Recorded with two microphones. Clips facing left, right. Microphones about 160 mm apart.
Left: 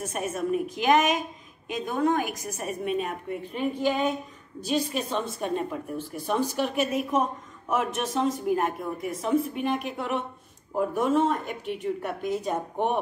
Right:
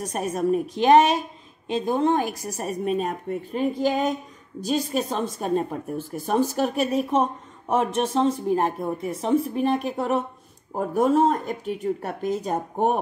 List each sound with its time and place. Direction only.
0.0 s speech: 35° right (ahead or behind)